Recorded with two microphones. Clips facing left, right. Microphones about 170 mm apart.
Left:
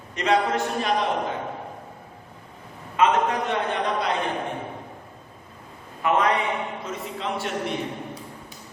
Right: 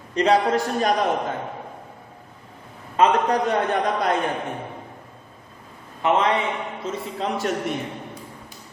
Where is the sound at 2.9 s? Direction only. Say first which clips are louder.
Right 2 dB; 35° right (ahead or behind).